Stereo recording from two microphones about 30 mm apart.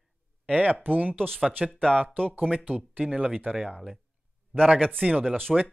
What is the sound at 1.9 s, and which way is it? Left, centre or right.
Speech, right.